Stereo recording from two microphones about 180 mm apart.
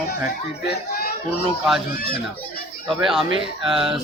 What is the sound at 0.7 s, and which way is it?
Speech, 60° left (ahead or behind).